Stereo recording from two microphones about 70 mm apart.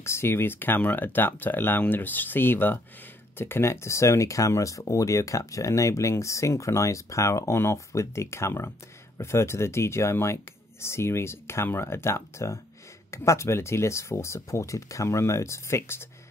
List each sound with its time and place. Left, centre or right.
0.0 s speech: left